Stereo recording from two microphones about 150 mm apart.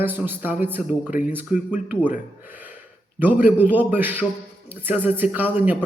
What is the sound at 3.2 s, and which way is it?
Speech, 10° right (ahead or behind).